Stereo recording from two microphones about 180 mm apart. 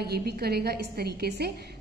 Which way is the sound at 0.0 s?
60° right (ahead or behind).